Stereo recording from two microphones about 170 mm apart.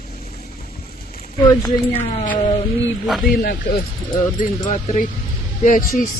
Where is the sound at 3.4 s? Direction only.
65° left (ahead or behind).